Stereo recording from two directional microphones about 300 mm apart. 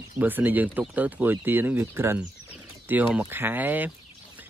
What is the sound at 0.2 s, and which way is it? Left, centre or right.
Speech, centre.